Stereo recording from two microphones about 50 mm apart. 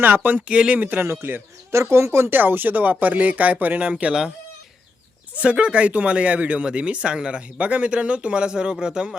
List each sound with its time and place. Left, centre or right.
0.0 s speech: right
0.4 s speech: right
0.8 s speech: right
1.0 s speech: right
2.3 s speech: right; by 4.3 s centre
5.4 s speech: right